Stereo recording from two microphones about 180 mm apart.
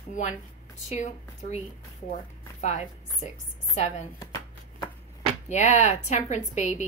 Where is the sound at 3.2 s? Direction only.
40° left (ahead or behind).